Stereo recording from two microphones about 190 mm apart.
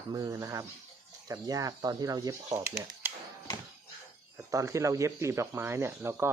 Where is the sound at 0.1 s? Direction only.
15° right (ahead or behind).